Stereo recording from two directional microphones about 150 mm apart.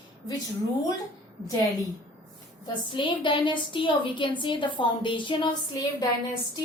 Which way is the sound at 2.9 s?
35° left (ahead or behind).